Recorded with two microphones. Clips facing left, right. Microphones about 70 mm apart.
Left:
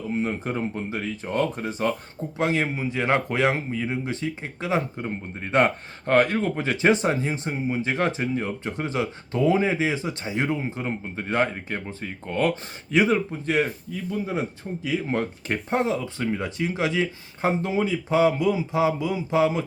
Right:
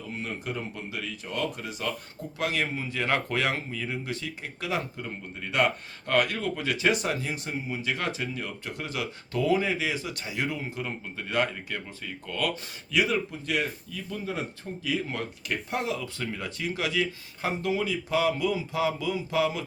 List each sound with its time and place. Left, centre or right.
0.2 s speech: left
2.4 s a man's voice: left